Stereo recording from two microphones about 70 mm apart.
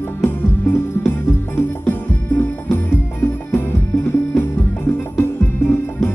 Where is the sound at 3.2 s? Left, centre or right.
Left.